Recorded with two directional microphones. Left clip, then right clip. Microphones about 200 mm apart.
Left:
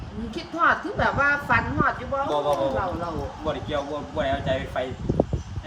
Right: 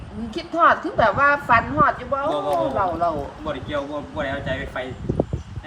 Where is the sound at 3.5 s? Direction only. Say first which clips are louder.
Even; 15° left (ahead or behind).